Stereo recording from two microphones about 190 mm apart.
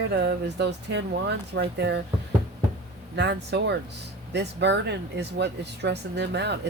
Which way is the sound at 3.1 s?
60° right (ahead or behind).